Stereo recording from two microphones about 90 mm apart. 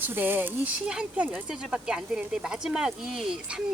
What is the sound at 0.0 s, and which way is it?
Speech, 20° right (ahead or behind).